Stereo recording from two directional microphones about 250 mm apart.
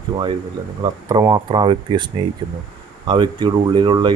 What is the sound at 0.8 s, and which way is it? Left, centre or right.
Speech, centre.